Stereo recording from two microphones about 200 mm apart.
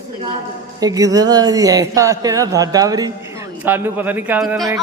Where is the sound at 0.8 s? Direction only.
20° right (ahead or behind).